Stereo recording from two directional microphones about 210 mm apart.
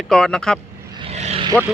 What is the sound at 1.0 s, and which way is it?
Vehicle, 30° right (ahead or behind).